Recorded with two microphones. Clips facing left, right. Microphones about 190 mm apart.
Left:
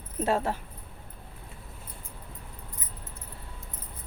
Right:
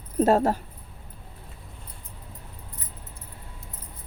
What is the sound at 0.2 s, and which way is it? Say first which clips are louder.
Speech: right 7 dB; 40° right (ahead or behind).